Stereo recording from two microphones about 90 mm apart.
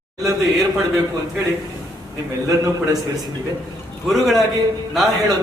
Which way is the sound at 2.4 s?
40° right (ahead or behind).